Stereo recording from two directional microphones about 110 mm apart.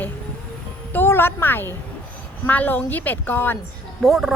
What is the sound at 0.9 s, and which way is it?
A woman's voice, 20° left (ahead or behind).